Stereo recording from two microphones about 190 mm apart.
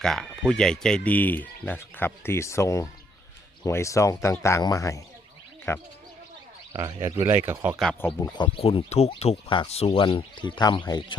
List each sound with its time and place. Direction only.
0.0 s speech: 5° left (ahead or behind)
6.7 s speech: 20° right (ahead or behind)
7.8 s speech: 5° left (ahead or behind)
8.4 s speech: 30° left (ahead or behind)